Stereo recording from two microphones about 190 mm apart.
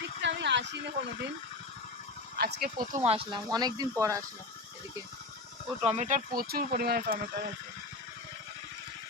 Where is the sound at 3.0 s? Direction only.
30° right (ahead or behind).